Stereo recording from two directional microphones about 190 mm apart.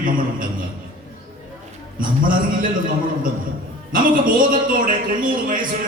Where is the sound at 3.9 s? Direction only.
45° right (ahead or behind).